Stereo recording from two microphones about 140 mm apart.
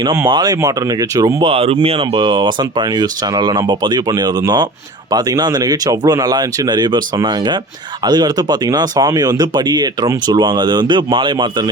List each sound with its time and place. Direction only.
0.3 s speech: 30° right (ahead or behind)
1.4 s speech: 40° right (ahead or behind)